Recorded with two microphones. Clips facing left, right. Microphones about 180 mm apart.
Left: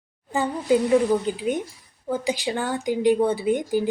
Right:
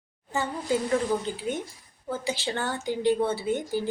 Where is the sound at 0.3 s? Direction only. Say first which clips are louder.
Left 6 dB; 15° left (ahead or behind).